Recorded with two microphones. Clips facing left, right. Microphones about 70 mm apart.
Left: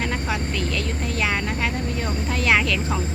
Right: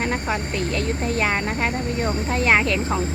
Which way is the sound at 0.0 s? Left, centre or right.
Right.